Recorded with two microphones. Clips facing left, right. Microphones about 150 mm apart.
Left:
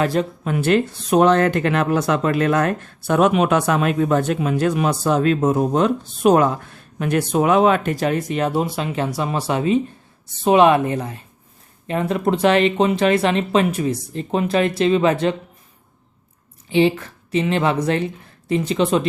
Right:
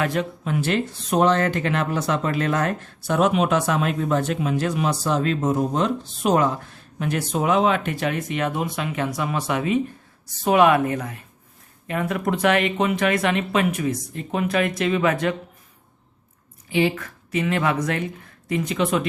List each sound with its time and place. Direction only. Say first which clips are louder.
0.0 s speech: left 4 dB; 35° left (ahead or behind)
0.4 s speech: left 7 dB; 55° left (ahead or behind); by 15.4 s 30° left (ahead or behind)
16.6 s speech: left 5 dB; 25° left (ahead or behind)